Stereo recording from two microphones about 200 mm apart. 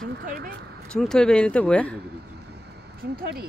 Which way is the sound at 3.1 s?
50° right (ahead or behind).